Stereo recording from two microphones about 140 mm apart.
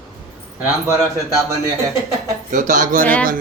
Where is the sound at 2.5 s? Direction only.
70° right (ahead or behind).